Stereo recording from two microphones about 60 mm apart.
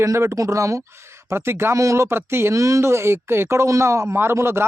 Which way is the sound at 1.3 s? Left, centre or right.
Right.